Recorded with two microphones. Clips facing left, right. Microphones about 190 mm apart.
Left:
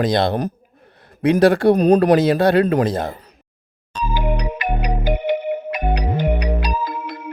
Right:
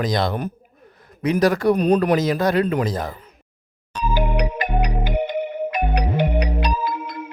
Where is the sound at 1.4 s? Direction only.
30° left (ahead or behind).